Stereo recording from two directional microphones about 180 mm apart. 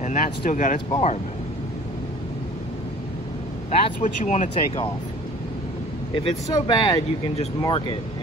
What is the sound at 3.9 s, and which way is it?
Speech, 45° left (ahead or behind).